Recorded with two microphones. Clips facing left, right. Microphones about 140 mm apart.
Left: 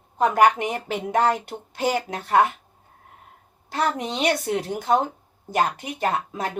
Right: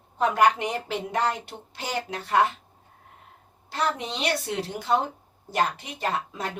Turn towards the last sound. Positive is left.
turn(degrees=50)  # may be behind; listen again after turning